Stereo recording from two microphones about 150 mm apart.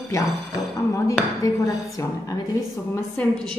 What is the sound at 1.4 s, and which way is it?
Speech, 20° left (ahead or behind).